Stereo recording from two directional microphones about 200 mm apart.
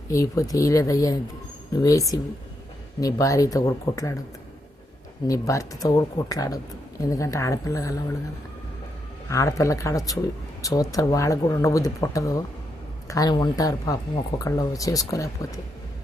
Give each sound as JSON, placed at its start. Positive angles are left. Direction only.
{"t": 0.1, "sound": "a woman's voice", "side_deg": 15}
{"t": 5.3, "sound": "a woman's voice", "side_deg": 15}
{"t": 9.3, "sound": "a woman's voice", "side_deg": 15}